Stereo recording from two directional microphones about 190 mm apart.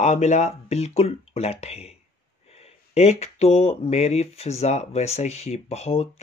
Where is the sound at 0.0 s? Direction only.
35° left (ahead or behind).